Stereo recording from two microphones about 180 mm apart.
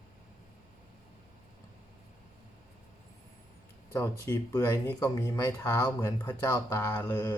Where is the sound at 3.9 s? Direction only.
20° left (ahead or behind).